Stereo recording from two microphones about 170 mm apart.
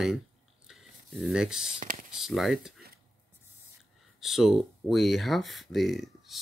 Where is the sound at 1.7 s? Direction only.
50° right (ahead or behind).